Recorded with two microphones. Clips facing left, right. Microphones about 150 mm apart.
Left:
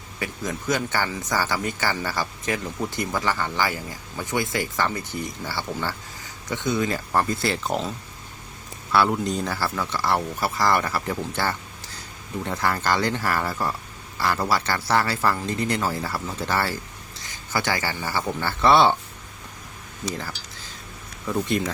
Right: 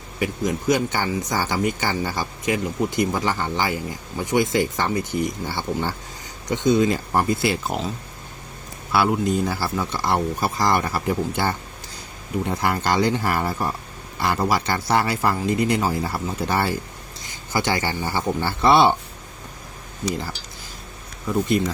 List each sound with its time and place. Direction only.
0.2 s speech: 15° right (ahead or behind)
8.9 s speech: 10° right (ahead or behind)